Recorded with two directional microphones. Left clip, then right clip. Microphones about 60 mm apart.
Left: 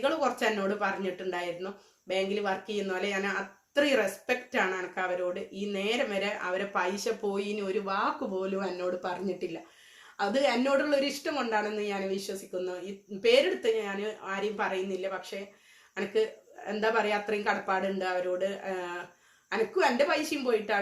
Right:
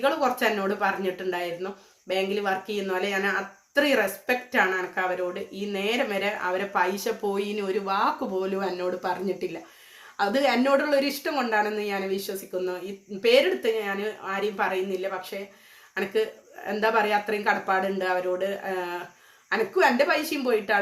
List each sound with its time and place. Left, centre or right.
0.0 s speech: centre
11.3 s speech: right